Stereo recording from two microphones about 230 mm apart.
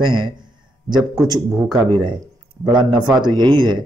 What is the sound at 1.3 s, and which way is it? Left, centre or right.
A man's voice, centre.